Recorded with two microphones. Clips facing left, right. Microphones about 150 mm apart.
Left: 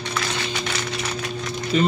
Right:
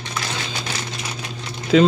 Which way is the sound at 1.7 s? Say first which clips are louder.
Right 6 dB; 90° right.